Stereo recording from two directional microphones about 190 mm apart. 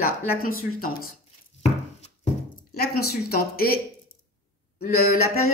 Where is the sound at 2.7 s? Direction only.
55° left (ahead or behind).